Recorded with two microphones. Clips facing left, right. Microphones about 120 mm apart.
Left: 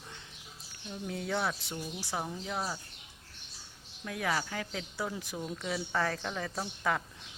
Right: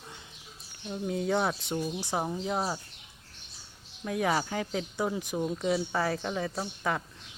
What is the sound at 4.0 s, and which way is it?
Speech, 25° right (ahead or behind).